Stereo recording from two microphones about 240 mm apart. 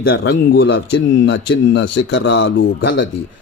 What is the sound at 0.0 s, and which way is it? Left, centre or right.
Speech, left.